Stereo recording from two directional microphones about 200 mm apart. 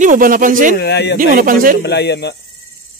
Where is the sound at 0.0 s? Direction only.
40° right (ahead or behind).